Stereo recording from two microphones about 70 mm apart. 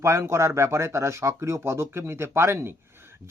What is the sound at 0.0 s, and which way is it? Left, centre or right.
Speech, right.